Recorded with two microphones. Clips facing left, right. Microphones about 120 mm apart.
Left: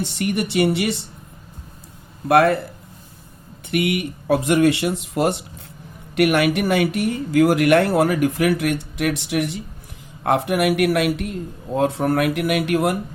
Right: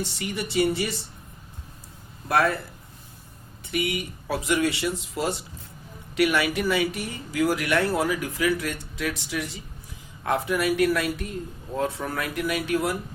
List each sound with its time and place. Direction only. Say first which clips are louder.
0.0 s speech: left 8 dB; 60° left (ahead or behind)
2.2 s speech: left 8 dB; 60° left (ahead or behind)
3.7 s a man's voice: left 7 dB; 60° left (ahead or behind)